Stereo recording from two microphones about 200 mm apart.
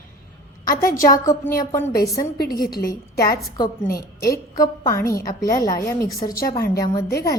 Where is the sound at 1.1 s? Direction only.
15° left (ahead or behind).